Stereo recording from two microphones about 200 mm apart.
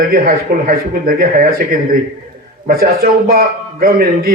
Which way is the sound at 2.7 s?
50° right (ahead or behind).